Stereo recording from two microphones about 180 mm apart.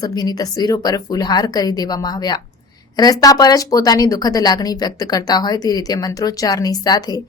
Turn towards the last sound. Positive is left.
turn(degrees=20)  # may be behind; listen again after turning